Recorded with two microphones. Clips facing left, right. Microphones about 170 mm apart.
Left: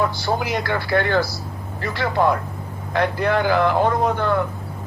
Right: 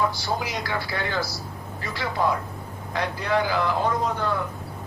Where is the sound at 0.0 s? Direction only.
60° left (ahead or behind).